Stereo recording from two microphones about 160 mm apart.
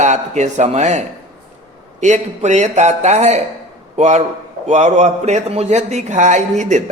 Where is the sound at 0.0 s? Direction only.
45° right (ahead or behind).